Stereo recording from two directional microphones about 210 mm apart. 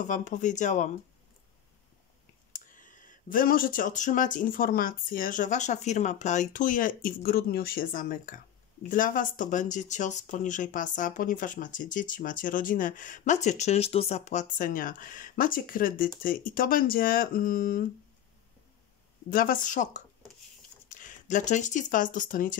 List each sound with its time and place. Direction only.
0.1 s speech: 35° left (ahead or behind)
2.5 s speech: 40° left (ahead or behind)
19.3 s speech: 40° left (ahead or behind)